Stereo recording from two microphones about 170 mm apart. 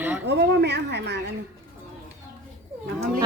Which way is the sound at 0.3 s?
85° right.